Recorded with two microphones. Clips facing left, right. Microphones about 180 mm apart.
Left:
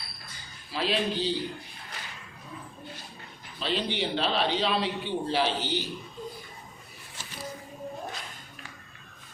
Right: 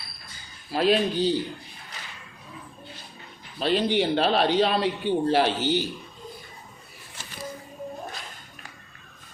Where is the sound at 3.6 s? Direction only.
50° right (ahead or behind).